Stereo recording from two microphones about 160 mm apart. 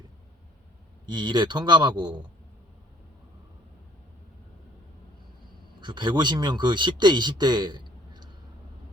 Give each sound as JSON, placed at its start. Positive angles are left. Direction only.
{"t": 1.0, "sound": "a man's voice", "side_deg": -30}
{"t": 5.8, "sound": "a man's voice", "side_deg": -30}